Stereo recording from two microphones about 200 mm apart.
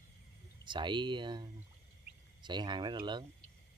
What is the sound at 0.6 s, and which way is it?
Speech, 25° right (ahead or behind).